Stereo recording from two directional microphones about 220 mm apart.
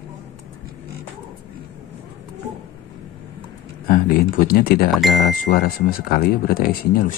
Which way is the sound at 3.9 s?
40° left (ahead or behind).